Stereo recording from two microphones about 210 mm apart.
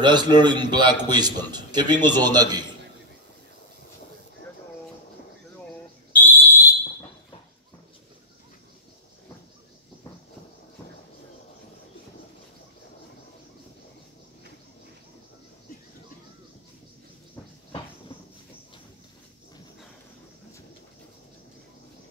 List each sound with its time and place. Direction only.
0.0 s a man's voice: 20° right (ahead or behind)
6.1 s fire alarm: 10° left (ahead or behind)